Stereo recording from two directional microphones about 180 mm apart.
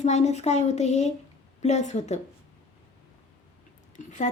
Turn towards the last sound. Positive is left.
turn(degrees=40)  # may be behind; listen again after turning